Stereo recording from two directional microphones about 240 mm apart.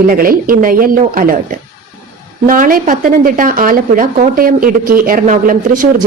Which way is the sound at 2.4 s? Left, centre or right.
Right.